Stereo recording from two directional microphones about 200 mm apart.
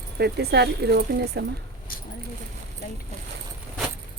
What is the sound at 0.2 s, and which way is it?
Speech, 55° right (ahead or behind).